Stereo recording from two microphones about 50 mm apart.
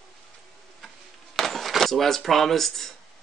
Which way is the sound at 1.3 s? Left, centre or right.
Centre.